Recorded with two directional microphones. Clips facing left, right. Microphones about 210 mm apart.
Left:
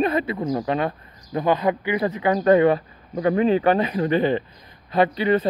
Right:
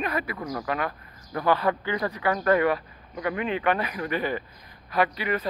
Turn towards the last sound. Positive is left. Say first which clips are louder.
# left 7 dB
turn(degrees=30)  # may be behind; listen again after turning